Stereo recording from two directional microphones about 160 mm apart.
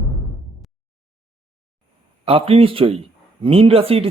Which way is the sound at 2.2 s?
35° right (ahead or behind).